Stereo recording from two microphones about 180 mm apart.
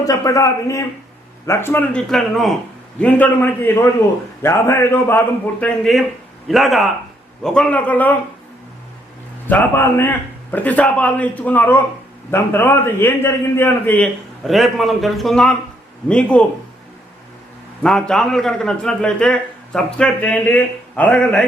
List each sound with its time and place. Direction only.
0.0 s a man's voice: 20° left (ahead or behind)
9.5 s a man's voice: 10° left (ahead or behind)
17.8 s a man's voice: 5° left (ahead or behind)